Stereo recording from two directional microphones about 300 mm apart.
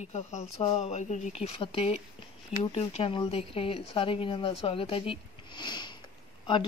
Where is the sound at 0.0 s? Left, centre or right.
Left.